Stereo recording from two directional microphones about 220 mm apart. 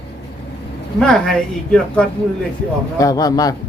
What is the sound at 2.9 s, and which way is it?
Speech, 15° left (ahead or behind).